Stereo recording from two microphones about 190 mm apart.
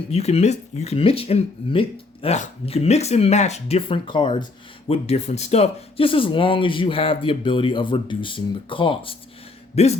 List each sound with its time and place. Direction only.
0.1 s speech: 30° left (ahead or behind)